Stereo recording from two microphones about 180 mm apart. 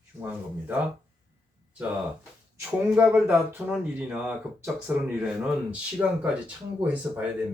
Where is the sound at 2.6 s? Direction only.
5° right (ahead or behind).